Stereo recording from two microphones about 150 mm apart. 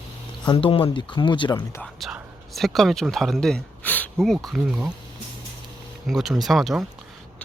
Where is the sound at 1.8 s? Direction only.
Centre (ahead or behind).